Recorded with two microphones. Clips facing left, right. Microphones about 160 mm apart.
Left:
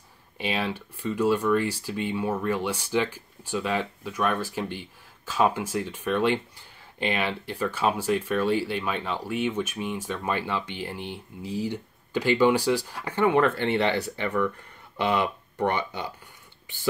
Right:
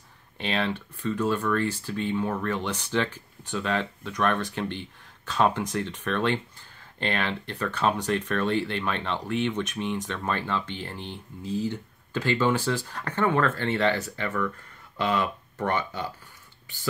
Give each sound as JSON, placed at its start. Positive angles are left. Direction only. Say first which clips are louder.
{"t": 0.4, "sound": "speech", "louder": "right 1 dB", "side_deg": 10}